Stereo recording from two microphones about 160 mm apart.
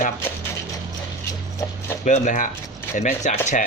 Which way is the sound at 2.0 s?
50° left (ahead or behind).